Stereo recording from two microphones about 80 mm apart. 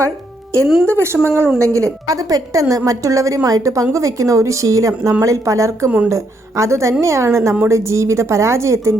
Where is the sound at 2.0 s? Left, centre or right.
Right.